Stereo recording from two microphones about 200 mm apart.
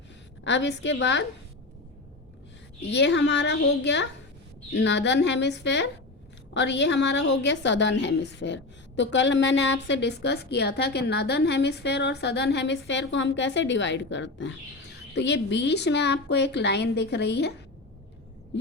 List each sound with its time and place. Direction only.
0.4 s a woman's voice: 65° left (ahead or behind)
2.9 s a woman's voice: 60° left (ahead or behind)